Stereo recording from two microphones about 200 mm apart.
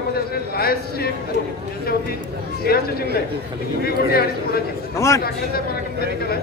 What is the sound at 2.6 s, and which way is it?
A man's voice, 50° left (ahead or behind).